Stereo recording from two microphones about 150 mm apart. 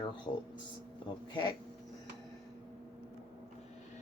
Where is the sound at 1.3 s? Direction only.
30° left (ahead or behind).